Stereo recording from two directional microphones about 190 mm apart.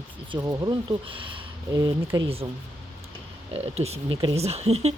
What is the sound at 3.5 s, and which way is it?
Speech, 35° right (ahead or behind).